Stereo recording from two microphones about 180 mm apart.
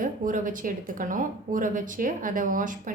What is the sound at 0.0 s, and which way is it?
Speech, 45° right (ahead or behind).